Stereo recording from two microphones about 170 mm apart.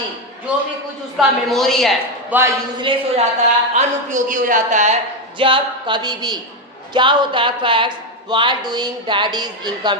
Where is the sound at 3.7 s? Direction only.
45° right (ahead or behind).